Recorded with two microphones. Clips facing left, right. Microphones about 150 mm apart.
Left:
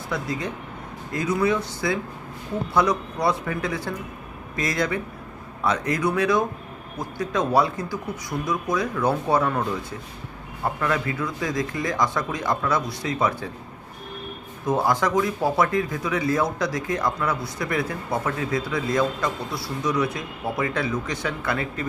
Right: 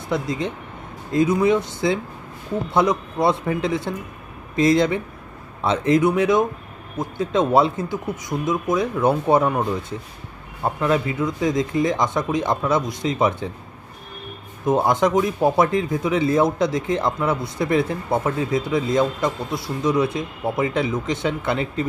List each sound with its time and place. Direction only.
0.1 s speech: 20° right (ahead or behind)
14.6 s speech: 20° right (ahead or behind)